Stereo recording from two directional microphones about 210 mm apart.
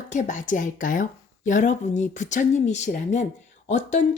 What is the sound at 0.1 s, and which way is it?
Speech, 35° left (ahead or behind).